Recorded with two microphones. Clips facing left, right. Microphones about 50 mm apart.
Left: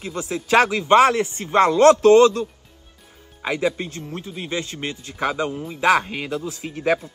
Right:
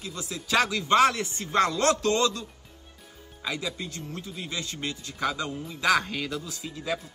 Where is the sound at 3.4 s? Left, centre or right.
Left.